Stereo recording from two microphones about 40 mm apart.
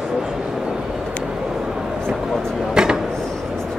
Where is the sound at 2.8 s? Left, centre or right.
Centre.